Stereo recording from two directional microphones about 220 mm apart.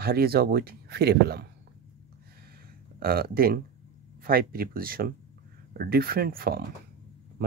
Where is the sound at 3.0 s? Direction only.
45° right (ahead or behind).